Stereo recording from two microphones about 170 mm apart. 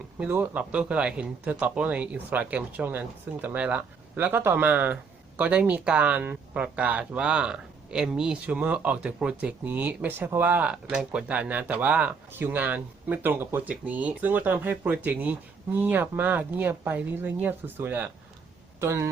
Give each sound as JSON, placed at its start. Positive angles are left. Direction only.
{"t": 0.2, "sound": "speech", "side_deg": -10}